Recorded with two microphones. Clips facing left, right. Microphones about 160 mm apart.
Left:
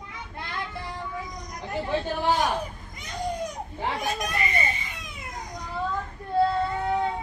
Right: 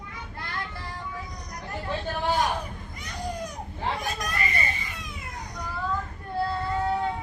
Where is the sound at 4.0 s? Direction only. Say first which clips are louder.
Left 2 dB; 20° left (ahead or behind).